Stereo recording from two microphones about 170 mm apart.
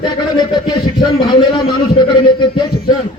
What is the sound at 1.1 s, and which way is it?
Speech, 25° left (ahead or behind).